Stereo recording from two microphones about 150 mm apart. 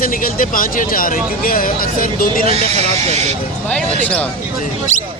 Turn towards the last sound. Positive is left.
turn(degrees=10)  # may be behind; listen again after turning